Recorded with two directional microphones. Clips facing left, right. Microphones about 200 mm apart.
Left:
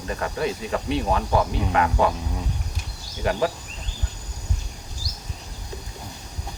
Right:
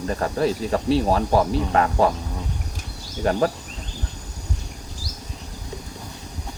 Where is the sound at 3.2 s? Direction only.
35° right (ahead or behind).